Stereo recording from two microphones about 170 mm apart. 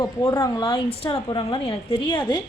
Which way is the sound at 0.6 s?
30° left (ahead or behind).